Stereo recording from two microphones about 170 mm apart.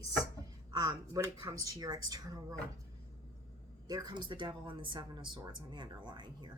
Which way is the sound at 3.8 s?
25° right (ahead or behind).